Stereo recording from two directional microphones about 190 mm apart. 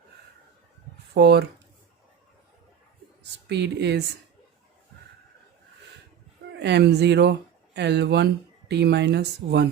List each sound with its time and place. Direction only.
1.1 s speech: 60° right (ahead or behind)
3.4 s speech: 65° right (ahead or behind)
6.6 s speech: 65° right (ahead or behind)